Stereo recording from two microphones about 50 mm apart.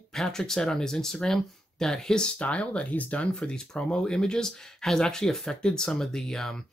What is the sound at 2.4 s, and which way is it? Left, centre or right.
Speech, left.